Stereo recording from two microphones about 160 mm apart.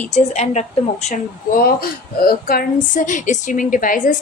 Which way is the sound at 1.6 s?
70° left (ahead or behind).